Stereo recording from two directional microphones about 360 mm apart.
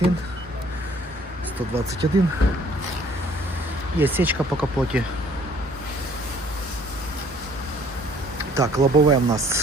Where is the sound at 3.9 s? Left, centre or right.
Centre.